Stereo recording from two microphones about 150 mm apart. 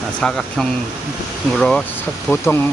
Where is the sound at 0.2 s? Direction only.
5° left (ahead or behind).